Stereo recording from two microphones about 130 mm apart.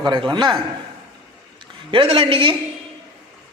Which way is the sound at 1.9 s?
45° right (ahead or behind).